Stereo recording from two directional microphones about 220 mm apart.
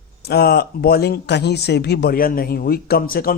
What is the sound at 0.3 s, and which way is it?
Speech, 45° left (ahead or behind).